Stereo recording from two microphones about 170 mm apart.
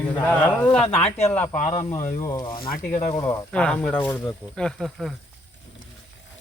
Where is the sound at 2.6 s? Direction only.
60° left (ahead or behind).